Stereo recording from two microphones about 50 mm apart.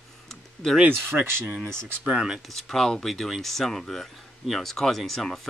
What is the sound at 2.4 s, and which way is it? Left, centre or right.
Speech, centre.